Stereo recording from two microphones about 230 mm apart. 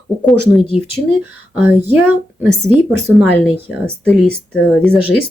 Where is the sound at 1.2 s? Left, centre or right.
Centre.